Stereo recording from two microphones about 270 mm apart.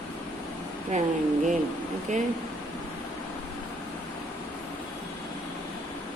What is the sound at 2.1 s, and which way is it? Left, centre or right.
Speech, right.